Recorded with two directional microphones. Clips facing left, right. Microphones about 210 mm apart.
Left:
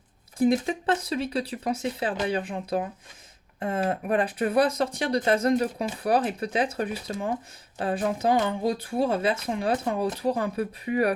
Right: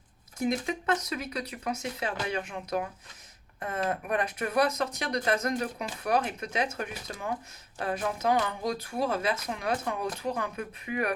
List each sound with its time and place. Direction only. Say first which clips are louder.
0.3 s speech: left 7 dB; 30° left (ahead or behind)